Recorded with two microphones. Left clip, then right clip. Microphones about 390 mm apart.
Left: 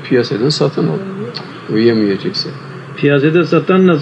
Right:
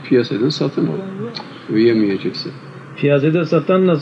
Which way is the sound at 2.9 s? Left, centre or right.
Right.